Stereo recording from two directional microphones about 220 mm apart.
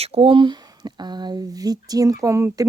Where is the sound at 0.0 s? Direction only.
25° right (ahead or behind).